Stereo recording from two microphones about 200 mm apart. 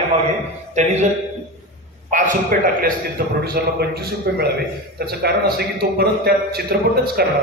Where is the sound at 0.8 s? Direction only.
35° right (ahead or behind).